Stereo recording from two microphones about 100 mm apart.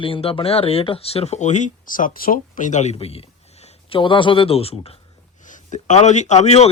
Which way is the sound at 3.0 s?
80° left.